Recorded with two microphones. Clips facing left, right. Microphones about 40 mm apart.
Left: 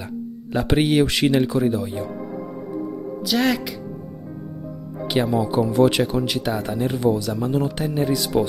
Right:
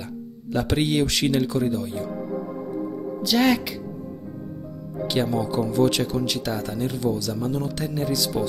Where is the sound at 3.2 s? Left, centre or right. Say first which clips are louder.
Right 1 dB; centre.